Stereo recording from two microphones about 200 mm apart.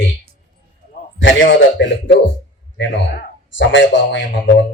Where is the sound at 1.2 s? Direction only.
70° left (ahead or behind).